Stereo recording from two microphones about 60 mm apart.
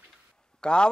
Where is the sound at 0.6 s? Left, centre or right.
Centre.